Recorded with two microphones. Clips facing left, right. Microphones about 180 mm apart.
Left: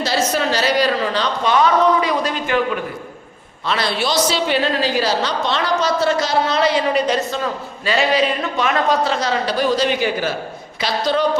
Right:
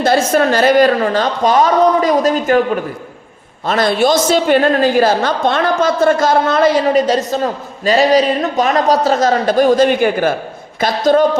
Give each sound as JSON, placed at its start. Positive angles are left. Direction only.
{"t": 0.0, "sound": "a woman's voice", "side_deg": -50}
{"t": 3.7, "sound": "a woman's voice", "side_deg": -45}